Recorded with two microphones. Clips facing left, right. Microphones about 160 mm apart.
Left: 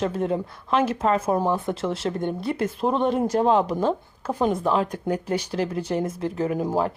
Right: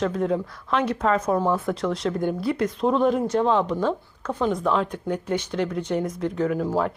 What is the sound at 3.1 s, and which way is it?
Speech, 35° left (ahead or behind).